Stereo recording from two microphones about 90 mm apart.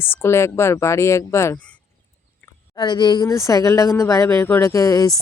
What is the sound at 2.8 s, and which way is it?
Speech, 55° left (ahead or behind).